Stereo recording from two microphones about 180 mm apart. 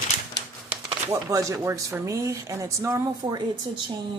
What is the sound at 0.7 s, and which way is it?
Speech, 15° right (ahead or behind).